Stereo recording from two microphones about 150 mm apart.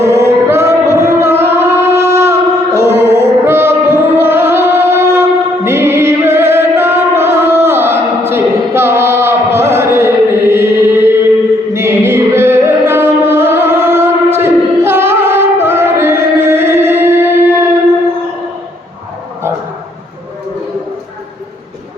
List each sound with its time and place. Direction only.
0.0 s music: 15° right (ahead or behind)
11.7 s singing: 15° right (ahead or behind)